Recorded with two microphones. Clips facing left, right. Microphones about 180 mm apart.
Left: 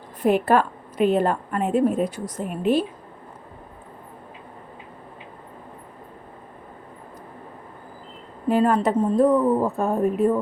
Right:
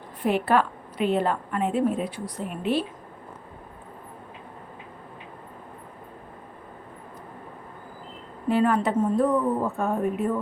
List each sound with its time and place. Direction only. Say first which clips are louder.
0.2 s a woman's voice: left 4 dB; 45° left (ahead or behind)
8.4 s a woman's voice: left 3 dB; 40° left (ahead or behind)